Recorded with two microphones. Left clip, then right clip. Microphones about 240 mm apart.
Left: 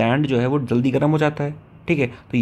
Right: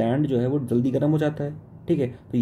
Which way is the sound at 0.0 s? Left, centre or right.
Centre.